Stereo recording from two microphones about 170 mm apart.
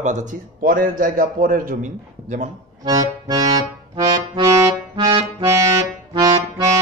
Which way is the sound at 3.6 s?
25° right (ahead or behind).